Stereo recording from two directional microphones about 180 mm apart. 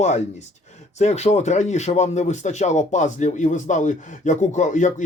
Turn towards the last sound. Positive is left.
turn(degrees=40)  # may be behind; listen again after turning